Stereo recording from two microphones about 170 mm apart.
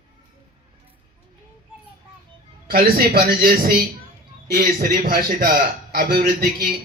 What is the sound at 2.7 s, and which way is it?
Speech, 65° right (ahead or behind).